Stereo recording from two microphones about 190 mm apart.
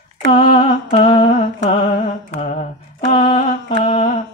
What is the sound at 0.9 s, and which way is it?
Humming, 30° left (ahead or behind).